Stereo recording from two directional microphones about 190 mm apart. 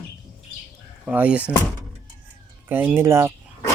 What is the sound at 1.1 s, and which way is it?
Speech, 5° right (ahead or behind).